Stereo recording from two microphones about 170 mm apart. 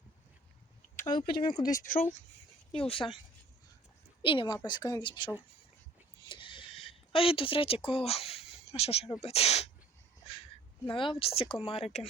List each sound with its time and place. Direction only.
1.4 s speech: 25° left (ahead or behind)
1.7 s speech: 55° left (ahead or behind)
2.7 s speech: 30° left (ahead or behind)
4.2 s a woman's voice: 30° left (ahead or behind)
6.2 s a sound: 30° left (ahead or behind)
9.2 s speech: 40° left (ahead or behind)
10.8 s speech: 30° left (ahead or behind)